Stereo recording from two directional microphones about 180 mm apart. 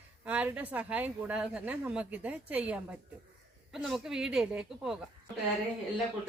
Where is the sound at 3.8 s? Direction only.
Centre (ahead or behind).